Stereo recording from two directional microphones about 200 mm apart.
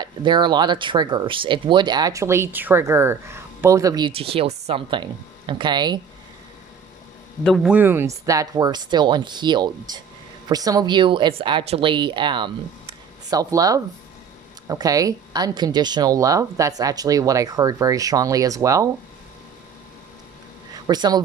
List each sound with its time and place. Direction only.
0.0 s speech: 25° right (ahead or behind)
7.4 s a man's voice: 5° left (ahead or behind)
7.7 s speech: 10° right (ahead or behind)
20.8 s speech: 20° right (ahead or behind)